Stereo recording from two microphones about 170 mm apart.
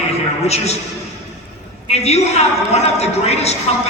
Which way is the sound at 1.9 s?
40° left (ahead or behind).